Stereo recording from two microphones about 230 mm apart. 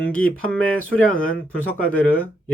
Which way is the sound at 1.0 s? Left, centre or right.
Left.